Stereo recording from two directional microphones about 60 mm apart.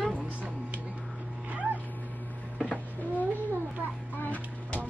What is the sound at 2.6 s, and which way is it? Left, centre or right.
Cat, centre.